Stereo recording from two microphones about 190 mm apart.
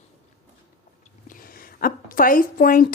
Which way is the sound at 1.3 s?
50° left (ahead or behind).